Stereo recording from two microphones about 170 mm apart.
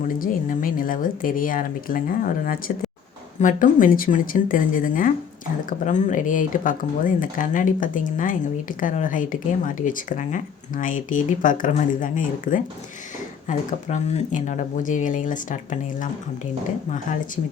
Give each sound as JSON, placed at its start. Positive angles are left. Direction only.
{"t": 0.2, "sound": "speech", "side_deg": 55}